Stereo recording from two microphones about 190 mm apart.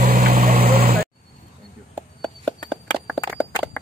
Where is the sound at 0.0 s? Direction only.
50° right (ahead or behind).